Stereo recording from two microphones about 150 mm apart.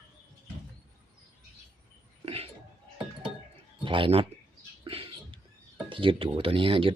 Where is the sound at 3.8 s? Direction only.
35° right (ahead or behind).